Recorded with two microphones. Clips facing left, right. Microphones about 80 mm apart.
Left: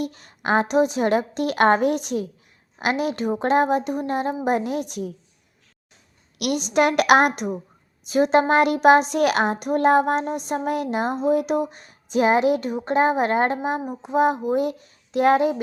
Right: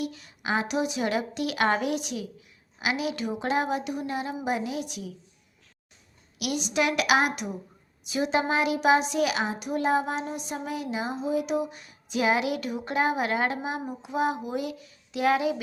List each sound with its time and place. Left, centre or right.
0.0 s a woman's voice: left
6.4 s a woman's voice: left